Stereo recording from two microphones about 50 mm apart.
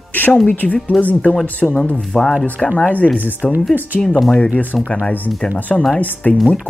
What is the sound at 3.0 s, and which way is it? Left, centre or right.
Speech, centre.